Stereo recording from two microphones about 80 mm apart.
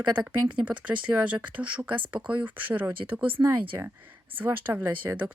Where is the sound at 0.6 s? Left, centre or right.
Centre.